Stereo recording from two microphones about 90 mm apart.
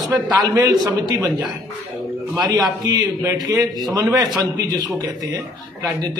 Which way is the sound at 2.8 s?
40° right (ahead or behind).